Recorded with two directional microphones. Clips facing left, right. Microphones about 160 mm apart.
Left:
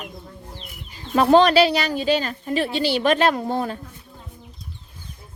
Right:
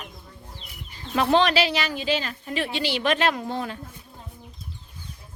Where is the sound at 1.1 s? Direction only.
40° left (ahead or behind).